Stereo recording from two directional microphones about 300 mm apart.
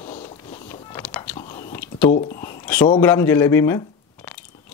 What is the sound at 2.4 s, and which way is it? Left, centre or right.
Speech, centre.